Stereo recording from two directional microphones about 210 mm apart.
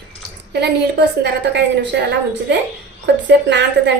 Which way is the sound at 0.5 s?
50° right (ahead or behind).